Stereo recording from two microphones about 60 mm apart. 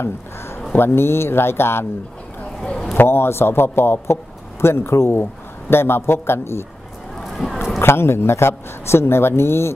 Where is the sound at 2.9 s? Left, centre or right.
Left.